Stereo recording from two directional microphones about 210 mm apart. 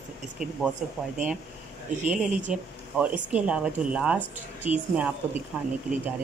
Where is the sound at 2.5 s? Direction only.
5° right (ahead or behind).